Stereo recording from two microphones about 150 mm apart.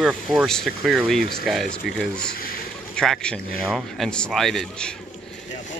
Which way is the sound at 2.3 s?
75° left (ahead or behind).